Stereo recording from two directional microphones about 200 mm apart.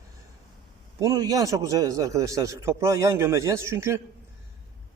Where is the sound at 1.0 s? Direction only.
15° right (ahead or behind).